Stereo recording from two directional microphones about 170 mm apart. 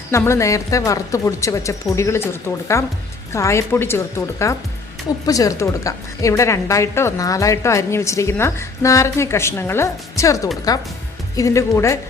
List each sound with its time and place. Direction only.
0.1 s a woman's voice: 15° left (ahead or behind)